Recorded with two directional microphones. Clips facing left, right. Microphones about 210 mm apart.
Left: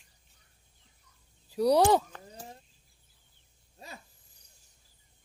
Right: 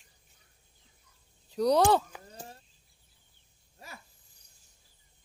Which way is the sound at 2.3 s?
15° left (ahead or behind).